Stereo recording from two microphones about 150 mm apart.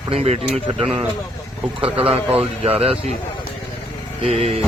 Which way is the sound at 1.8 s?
40° right (ahead or behind).